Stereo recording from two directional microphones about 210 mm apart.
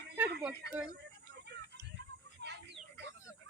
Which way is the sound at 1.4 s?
55° right (ahead or behind).